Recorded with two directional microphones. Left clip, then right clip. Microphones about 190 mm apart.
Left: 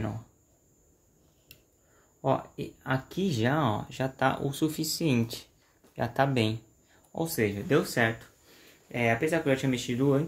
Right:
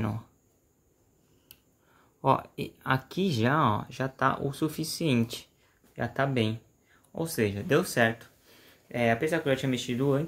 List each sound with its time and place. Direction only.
2.2 s speech: 30° right (ahead or behind)